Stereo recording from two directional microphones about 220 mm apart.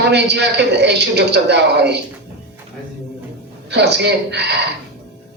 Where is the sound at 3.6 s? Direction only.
50° right (ahead or behind).